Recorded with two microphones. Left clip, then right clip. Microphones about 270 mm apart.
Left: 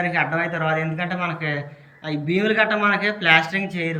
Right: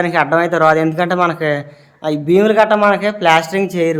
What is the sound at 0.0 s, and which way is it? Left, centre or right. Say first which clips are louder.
Speech: right 8 dB; centre.